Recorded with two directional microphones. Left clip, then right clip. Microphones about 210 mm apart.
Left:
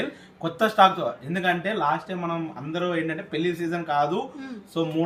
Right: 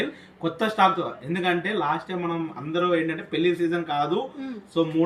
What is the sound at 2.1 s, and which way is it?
Speech, 20° left (ahead or behind).